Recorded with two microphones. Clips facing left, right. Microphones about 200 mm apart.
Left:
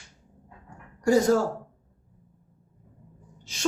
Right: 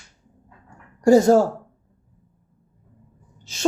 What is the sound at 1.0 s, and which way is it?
Speech, 25° right (ahead or behind).